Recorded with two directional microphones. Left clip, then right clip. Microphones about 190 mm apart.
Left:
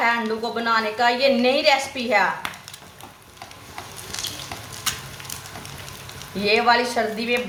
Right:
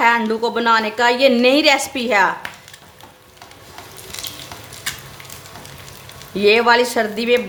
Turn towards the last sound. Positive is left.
turn(degrees=-60)  # may be behind; listen again after turning